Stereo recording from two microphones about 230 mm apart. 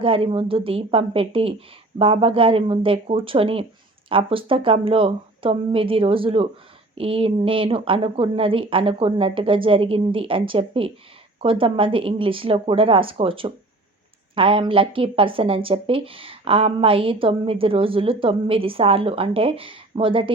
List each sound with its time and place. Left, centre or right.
0.0 s a woman's voice: right